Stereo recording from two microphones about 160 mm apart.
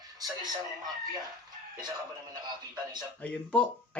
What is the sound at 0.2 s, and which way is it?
Speech, 25° right (ahead or behind).